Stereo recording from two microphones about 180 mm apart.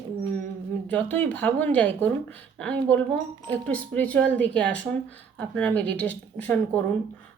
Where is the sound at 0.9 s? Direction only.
10° left (ahead or behind).